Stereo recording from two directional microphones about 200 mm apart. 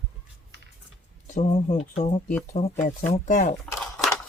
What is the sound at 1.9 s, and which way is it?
Speech, 40° left (ahead or behind).